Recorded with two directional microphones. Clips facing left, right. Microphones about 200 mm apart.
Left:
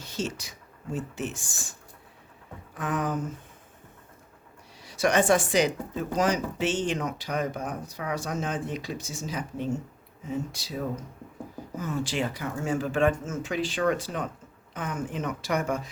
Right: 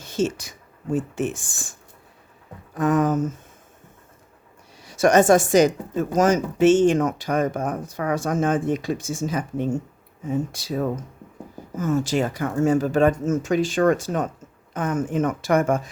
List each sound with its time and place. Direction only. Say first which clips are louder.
0.0 s speech: right 9 dB; 50° right (ahead or behind)
2.7 s speech: right 9 dB; 45° right (ahead or behind)
4.8 s speech: right 7 dB; 45° right (ahead or behind)